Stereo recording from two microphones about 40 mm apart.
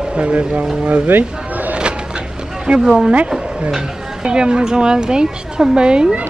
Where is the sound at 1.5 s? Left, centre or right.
Right.